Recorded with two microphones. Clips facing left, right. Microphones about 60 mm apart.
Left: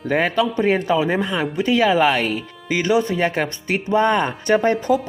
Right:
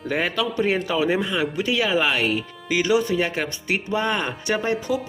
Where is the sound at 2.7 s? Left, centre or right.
Left.